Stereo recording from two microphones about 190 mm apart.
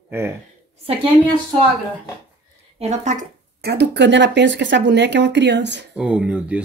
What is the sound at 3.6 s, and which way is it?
Speech, 60° right (ahead or behind).